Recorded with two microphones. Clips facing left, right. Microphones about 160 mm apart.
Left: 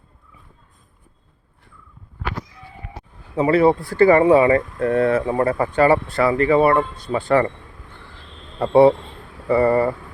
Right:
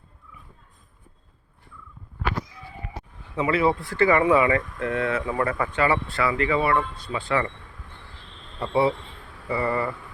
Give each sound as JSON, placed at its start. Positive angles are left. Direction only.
{"t": 3.3, "sound": "speech", "side_deg": 40}
{"t": 8.6, "sound": "speech", "side_deg": 50}